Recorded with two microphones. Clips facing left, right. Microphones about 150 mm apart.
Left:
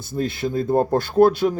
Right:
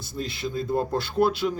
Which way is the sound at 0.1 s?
50° left (ahead or behind).